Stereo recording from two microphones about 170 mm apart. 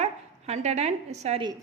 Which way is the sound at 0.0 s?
40° right (ahead or behind).